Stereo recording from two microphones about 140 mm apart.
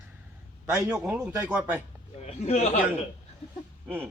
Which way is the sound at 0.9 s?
5° right (ahead or behind).